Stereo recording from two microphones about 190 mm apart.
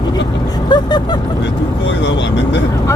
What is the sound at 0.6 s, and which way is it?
Speech, 25° left (ahead or behind).